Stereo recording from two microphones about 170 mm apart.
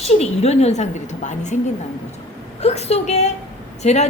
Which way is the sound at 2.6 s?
35° left (ahead or behind).